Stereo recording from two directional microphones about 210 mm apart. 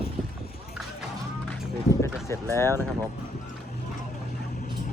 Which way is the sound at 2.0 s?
10° left (ahead or behind).